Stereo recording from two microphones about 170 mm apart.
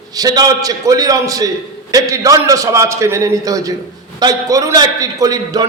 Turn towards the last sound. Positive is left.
turn(degrees=-20)  # may be behind; listen again after turning